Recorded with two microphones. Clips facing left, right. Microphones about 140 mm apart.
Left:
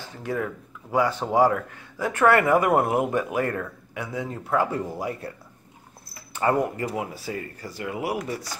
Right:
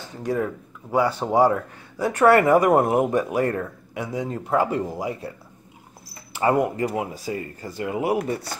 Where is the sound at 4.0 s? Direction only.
15° right (ahead or behind).